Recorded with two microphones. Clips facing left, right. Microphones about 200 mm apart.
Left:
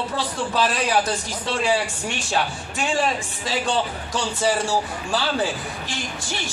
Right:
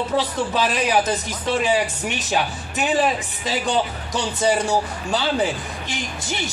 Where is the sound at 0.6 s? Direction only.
15° right (ahead or behind).